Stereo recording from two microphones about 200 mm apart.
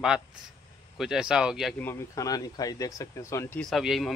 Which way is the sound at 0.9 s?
Centre (ahead or behind).